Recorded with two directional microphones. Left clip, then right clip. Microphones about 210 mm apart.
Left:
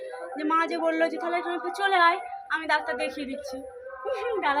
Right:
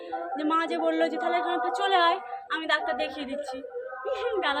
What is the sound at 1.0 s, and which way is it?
Speech, 20° right (ahead or behind).